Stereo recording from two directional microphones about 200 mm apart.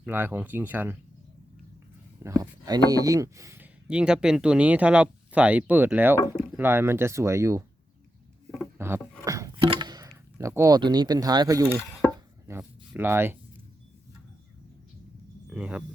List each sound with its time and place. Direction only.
0.0 s speech: 10° right (ahead or behind)
2.2 s speech: 15° right (ahead or behind)
8.8 s a sound: 10° right (ahead or behind)
9.6 s speech: 20° right (ahead or behind)
15.4 s speech: 5° right (ahead or behind)